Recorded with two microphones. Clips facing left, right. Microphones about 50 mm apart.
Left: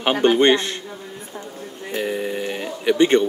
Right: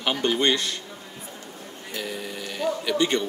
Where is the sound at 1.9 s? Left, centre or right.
Left.